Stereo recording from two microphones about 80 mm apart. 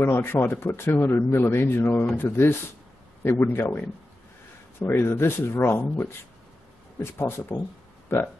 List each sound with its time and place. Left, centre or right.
0.0 s speech: left